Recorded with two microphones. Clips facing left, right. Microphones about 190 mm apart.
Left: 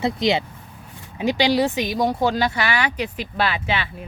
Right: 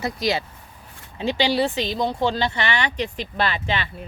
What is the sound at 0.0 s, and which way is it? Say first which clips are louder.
Speech: left 4 dB; 25° left (ahead or behind).